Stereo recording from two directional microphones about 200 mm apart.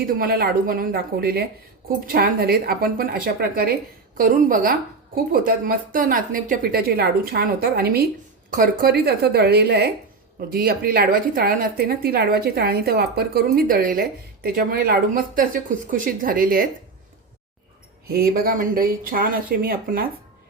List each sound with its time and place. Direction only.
0.2 s a woman's voice: 50° right (ahead or behind)
18.1 s a woman's voice: 50° right (ahead or behind)